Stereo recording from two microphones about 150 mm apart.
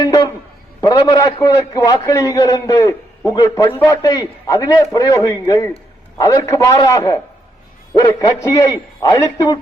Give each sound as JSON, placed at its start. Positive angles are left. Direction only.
{"t": 0.0, "sound": "a sound", "side_deg": 25}
{"t": 0.8, "sound": "a man's voice", "side_deg": 25}
{"t": 8.5, "sound": "a man's voice", "side_deg": 25}